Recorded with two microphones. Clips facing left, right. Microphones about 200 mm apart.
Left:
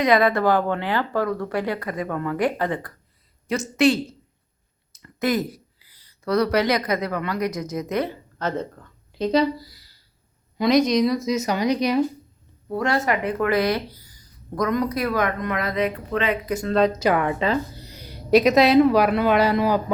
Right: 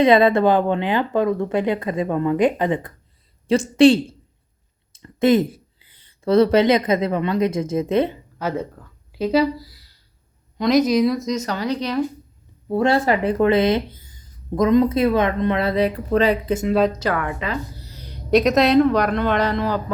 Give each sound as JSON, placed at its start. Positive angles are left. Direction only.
{"t": 0.0, "sound": "speech", "side_deg": -25}
{"t": 3.4, "sound": "speech", "side_deg": -30}
{"t": 8.4, "sound": "speech", "side_deg": -10}
{"t": 12.6, "sound": "speech", "side_deg": -30}
{"t": 16.6, "sound": "speech", "side_deg": -5}
{"t": 16.9, "sound": "speech", "side_deg": 15}
{"t": 17.2, "sound": "speech", "side_deg": 30}
{"t": 17.8, "sound": "speech", "side_deg": 10}